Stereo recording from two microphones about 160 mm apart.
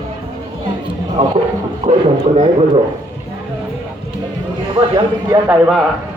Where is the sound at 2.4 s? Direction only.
35° right (ahead or behind).